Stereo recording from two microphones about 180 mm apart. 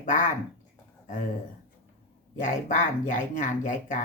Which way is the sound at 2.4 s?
45° left (ahead or behind).